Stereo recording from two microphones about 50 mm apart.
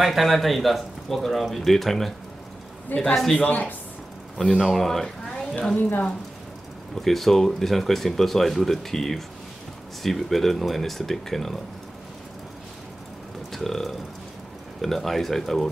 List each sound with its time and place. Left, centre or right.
0.0 s speech: centre
2.9 s speech: left
4.4 s speech: centre
7.0 s speech: centre
13.5 s speech: centre